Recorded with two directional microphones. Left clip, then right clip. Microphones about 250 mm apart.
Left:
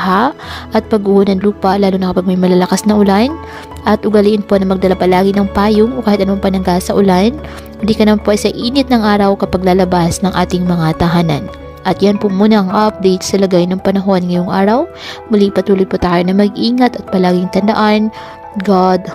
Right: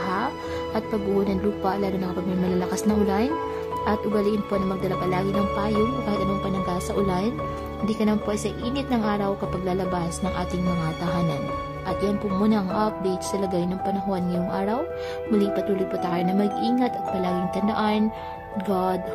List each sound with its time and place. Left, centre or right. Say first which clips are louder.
0.0 s a woman's voice: left 14 dB; left